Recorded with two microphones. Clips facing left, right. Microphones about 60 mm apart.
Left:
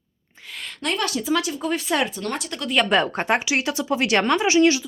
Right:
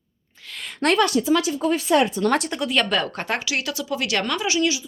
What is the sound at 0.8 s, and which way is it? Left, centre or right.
Speech, right.